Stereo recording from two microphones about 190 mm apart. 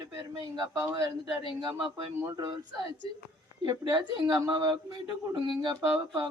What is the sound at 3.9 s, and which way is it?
Speech, 20° right (ahead or behind).